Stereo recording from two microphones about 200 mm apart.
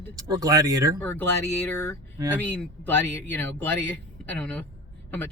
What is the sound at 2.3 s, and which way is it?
A man's voice, 10° left (ahead or behind).